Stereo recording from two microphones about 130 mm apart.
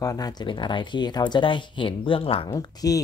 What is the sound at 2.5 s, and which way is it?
Speech, 30° left (ahead or behind).